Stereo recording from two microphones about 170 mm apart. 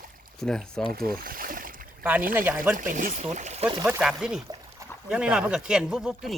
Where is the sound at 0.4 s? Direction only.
Centre (ahead or behind).